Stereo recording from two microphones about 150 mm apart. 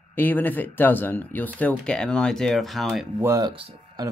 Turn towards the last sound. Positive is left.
turn(degrees=-25)  # may be behind; listen again after turning